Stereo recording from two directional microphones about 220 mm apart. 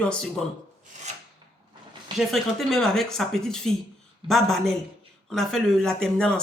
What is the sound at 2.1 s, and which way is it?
A woman's voice, centre (ahead or behind).